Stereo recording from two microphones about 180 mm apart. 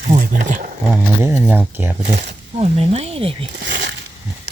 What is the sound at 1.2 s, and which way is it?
Speech, 10° right (ahead or behind).